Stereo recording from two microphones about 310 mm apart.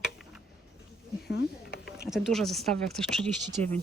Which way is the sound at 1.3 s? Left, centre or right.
Left.